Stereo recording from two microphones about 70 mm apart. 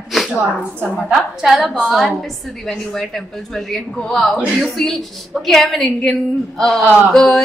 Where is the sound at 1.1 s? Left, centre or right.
Centre.